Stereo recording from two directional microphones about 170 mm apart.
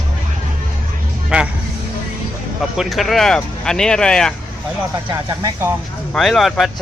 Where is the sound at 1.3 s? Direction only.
5° right (ahead or behind).